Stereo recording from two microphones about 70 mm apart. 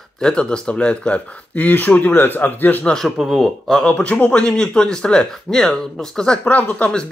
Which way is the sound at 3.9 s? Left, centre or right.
Centre.